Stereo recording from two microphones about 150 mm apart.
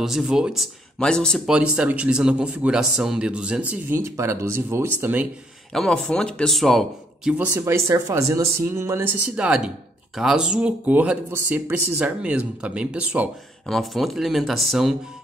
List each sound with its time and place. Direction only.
0.0 s a man's voice: 5° right (ahead or behind)
1.5 s speech: 5° right (ahead or behind)
5.7 s a man's voice: 5° left (ahead or behind)
7.5 s a man's voice: 20° right (ahead or behind); by 15.0 s centre (ahead or behind)